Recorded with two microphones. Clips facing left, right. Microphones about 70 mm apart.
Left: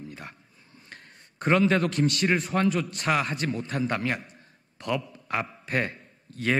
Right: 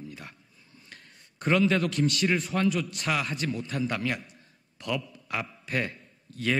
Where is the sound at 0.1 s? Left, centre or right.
Left.